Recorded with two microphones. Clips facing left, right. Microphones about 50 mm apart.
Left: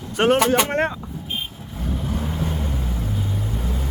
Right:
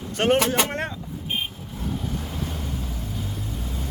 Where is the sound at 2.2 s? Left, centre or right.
Left.